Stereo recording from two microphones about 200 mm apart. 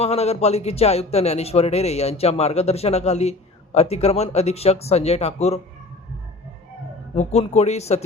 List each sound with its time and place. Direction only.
0.0 s a man's voice: 30° left (ahead or behind)
7.2 s a man's voice: 30° left (ahead or behind)